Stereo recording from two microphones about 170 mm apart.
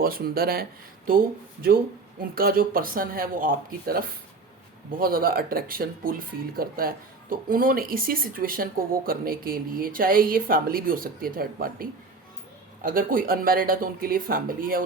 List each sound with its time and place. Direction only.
0.0 s speech: 60° right (ahead or behind)
2.3 s speech: 60° right (ahead or behind)